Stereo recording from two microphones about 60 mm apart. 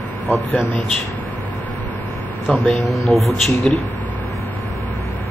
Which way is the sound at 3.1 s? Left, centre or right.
Centre.